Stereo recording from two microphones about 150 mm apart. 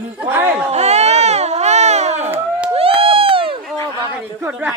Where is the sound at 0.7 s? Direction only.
45° right (ahead or behind).